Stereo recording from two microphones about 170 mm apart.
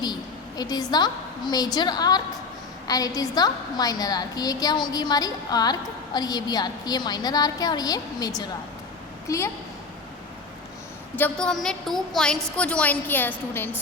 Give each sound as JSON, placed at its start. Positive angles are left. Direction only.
{"t": 0.0, "sound": "a woman's voice", "side_deg": 25}
{"t": 11.2, "sound": "a woman's voice", "side_deg": 5}